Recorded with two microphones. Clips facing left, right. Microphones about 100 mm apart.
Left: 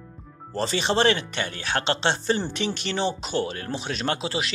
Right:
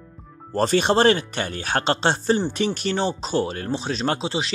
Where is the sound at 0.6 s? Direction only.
50° right (ahead or behind).